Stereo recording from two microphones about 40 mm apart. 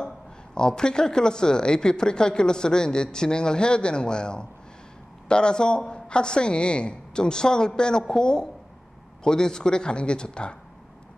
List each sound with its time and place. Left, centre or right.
0.6 s speech: centre